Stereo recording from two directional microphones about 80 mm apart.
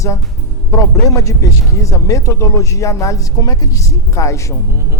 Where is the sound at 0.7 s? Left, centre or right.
Left.